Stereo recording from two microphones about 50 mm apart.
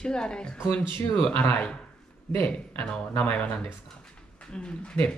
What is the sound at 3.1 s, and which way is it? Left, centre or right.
Speech, left.